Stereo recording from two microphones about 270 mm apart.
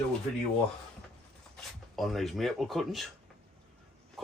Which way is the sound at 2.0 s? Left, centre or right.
Centre.